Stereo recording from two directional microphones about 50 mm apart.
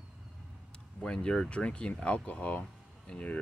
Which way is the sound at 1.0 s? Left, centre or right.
Centre.